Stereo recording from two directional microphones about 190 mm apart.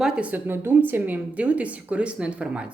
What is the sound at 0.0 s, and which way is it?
Speech, 5° right (ahead or behind).